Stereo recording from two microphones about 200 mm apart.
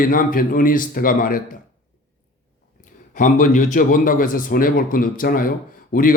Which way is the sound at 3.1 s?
40° left (ahead or behind).